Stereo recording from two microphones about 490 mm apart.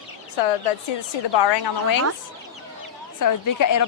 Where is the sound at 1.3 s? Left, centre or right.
Left.